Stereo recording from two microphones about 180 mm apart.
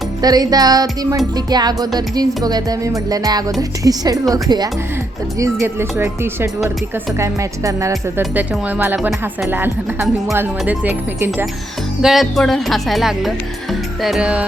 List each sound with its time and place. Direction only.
0.2 s music: 20° right (ahead or behind)
5.6 s speech: 15° right (ahead or behind)